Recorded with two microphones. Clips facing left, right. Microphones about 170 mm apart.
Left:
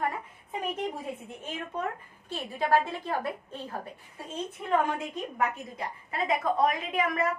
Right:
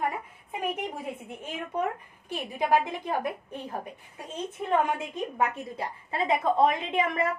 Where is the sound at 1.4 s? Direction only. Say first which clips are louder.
Right 4 dB; 15° right (ahead or behind).